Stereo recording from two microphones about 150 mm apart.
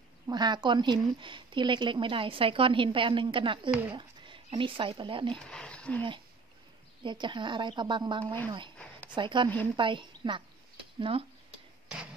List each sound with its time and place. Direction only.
0.3 s speech: 30° right (ahead or behind)
5.5 s speech: 5° left (ahead or behind)
7.0 s speech: 30° right (ahead or behind)